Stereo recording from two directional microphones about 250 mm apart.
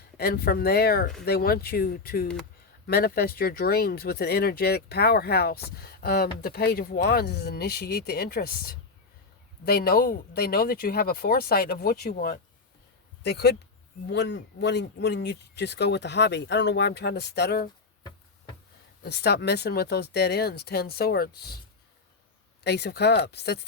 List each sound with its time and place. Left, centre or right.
0.2 s speech: left
19.0 s speech: left
22.6 s speech: left